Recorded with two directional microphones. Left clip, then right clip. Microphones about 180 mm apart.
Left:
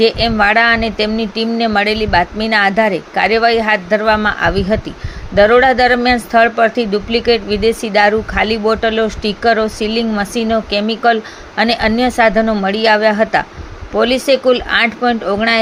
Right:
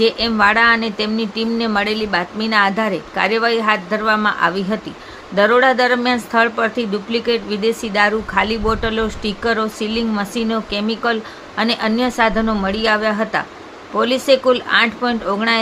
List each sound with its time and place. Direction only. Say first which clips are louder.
0.0 s speech: left 3 dB; 15° left (ahead or behind)